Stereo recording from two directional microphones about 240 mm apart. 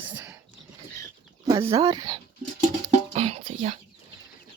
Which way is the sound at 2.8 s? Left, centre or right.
Right.